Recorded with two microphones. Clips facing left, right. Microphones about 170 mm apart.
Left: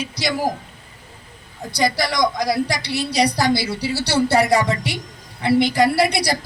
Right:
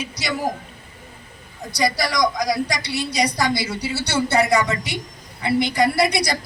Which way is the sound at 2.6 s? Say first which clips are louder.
Left 2 dB; 35° left (ahead or behind).